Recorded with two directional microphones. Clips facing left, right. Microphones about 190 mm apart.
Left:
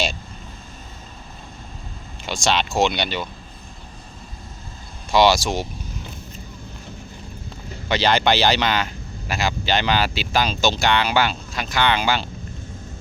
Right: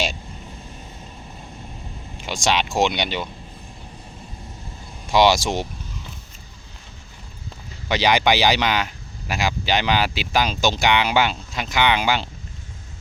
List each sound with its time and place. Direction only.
2.2 s speech: 15° right (ahead or behind)
5.1 s speech: 15° right (ahead or behind)
7.9 s speech: 15° right (ahead or behind)